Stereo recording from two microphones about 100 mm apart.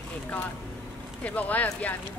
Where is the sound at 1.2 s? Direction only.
15° left (ahead or behind).